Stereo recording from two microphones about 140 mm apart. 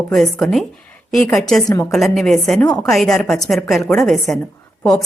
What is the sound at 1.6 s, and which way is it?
Speech, 20° left (ahead or behind).